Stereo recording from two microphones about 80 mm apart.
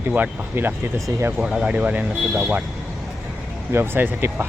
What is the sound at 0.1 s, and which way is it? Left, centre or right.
Speech, right.